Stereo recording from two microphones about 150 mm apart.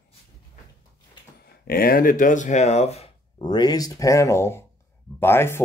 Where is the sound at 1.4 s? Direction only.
90° left; by 3.1 s 45° left (ahead or behind).